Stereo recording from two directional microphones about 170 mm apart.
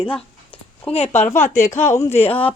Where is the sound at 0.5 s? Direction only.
35° left (ahead or behind).